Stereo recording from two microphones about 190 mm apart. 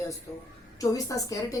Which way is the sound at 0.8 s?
20° left (ahead or behind).